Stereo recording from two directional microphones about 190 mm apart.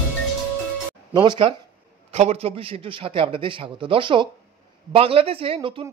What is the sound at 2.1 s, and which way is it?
A man's voice, 35° right (ahead or behind).